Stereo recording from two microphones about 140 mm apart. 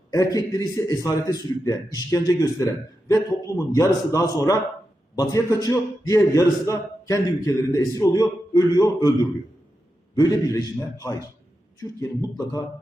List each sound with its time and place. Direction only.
0.1 s a man's voice: 25° left (ahead or behind)
10.2 s a man's voice: 25° left (ahead or behind)